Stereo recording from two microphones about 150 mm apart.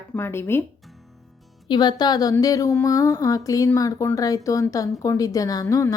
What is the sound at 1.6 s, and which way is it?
A woman's voice, 30° left (ahead or behind).